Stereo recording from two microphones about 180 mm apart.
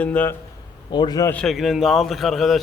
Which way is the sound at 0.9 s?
25° left (ahead or behind).